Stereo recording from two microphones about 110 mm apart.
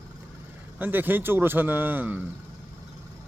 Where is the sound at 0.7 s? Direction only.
20° right (ahead or behind).